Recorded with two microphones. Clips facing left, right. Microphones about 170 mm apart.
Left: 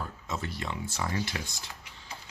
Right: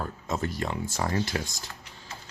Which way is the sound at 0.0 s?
45° right (ahead or behind).